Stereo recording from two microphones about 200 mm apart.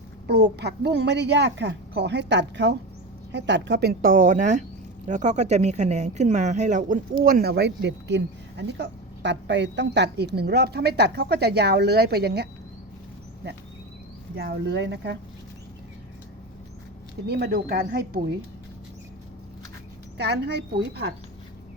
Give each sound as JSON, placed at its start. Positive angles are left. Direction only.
{"t": 0.3, "sound": "speech", "side_deg": -55}
{"t": 14.3, "sound": "speech", "side_deg": -55}
{"t": 17.2, "sound": "speech", "side_deg": -50}
{"t": 20.1, "sound": "speech", "side_deg": -55}